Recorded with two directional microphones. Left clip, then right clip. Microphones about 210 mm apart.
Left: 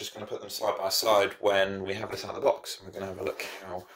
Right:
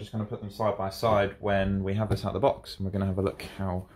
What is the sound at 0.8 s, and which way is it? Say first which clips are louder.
Speech: left 4 dB; 45° left (ahead or behind).